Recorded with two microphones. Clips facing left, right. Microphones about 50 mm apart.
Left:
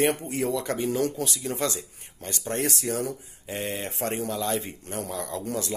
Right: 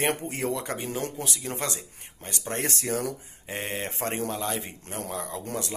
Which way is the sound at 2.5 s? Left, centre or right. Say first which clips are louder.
Left 1 dB; right.